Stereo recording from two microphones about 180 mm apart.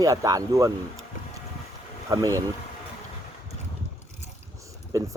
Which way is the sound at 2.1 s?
20° right (ahead or behind).